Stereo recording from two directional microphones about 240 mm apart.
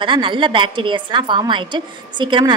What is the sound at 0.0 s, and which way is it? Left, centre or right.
A woman's voice, right.